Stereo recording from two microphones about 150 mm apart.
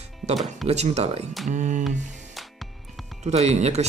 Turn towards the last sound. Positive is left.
turn(degrees=-45)  # may be behind; listen again after turning